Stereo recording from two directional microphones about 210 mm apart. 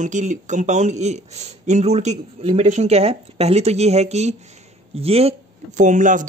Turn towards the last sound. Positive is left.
turn(degrees=-35)  # may be behind; listen again after turning